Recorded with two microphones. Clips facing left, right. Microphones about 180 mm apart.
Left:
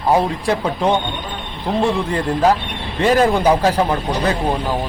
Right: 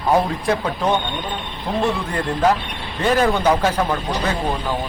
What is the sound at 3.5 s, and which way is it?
Speech, 35° left (ahead or behind).